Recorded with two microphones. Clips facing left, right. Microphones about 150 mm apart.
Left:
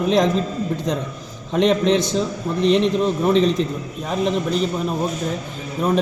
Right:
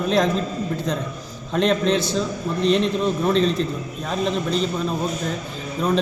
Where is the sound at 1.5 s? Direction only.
15° left (ahead or behind).